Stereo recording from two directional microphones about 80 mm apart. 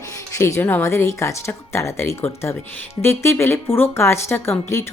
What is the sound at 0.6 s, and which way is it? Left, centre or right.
Speech, left.